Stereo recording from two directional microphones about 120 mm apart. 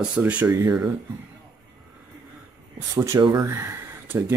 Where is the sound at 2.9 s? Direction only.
25° right (ahead or behind).